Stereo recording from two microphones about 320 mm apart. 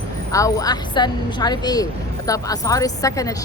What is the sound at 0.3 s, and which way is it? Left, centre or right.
Speech, centre.